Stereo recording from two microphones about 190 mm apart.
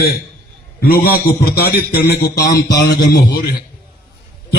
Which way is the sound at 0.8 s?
50° left (ahead or behind).